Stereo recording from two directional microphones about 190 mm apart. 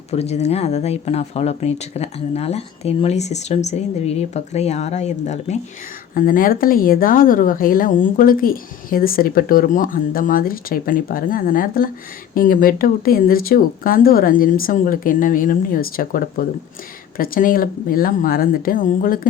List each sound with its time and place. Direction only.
0.1 s speech: 35° left (ahead or behind)
6.1 s speech: 45° left (ahead or behind)